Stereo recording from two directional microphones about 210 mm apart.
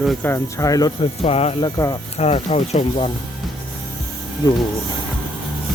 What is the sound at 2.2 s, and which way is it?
Speech, 30° left (ahead or behind).